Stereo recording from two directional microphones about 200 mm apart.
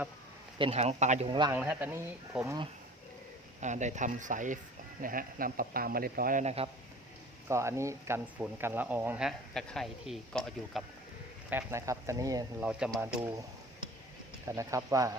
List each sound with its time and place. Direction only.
0.6 s speech: 30° right (ahead or behind)
1.3 s speech: 20° right (ahead or behind)
1.5 s speech: 10° right (ahead or behind)
3.6 s speech: 35° right (ahead or behind)
7.4 s speech: 15° right (ahead or behind)
11.4 s speech: 10° right (ahead or behind)
12.6 s speech: 5° right (ahead or behind)
13.1 s speech: 15° right (ahead or behind)
14.4 s speech: 15° right (ahead or behind)